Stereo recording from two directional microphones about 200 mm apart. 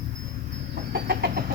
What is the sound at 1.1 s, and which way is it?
Vehicle, 50° right (ahead or behind).